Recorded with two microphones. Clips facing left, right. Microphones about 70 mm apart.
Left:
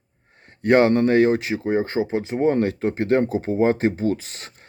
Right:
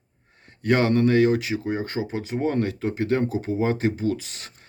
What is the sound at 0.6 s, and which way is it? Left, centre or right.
Speech, left.